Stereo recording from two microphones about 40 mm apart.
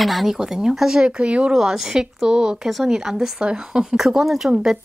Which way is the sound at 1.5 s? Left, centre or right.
Centre.